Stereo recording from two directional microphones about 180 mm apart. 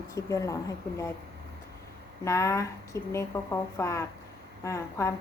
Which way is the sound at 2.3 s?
15° left (ahead or behind).